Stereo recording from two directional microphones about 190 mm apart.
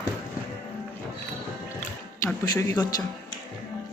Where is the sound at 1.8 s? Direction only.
15° left (ahead or behind).